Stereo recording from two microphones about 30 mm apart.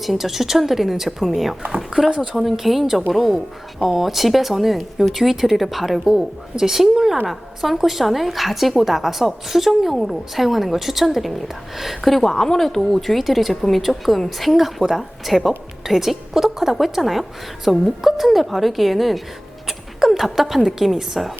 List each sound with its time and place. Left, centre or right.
0.0 s a woman's voice: centre
12.2 s a woman's voice: centre